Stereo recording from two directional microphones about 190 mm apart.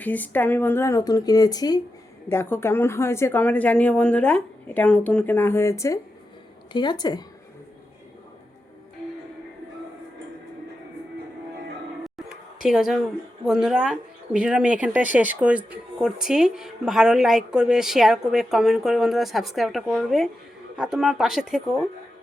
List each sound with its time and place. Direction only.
0.0 s a woman's voice: 10° left (ahead or behind)
12.0 s a sound: centre (ahead or behind)
13.4 s speech: 5° right (ahead or behind)